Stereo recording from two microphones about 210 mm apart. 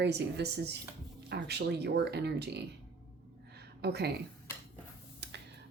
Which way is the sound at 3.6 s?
50° right (ahead or behind).